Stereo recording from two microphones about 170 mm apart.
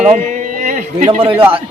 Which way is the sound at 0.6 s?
45° right (ahead or behind).